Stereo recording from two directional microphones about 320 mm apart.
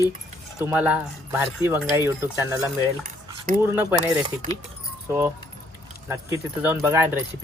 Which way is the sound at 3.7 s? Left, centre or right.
Centre.